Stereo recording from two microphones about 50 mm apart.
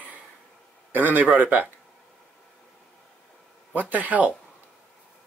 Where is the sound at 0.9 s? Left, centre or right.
Right.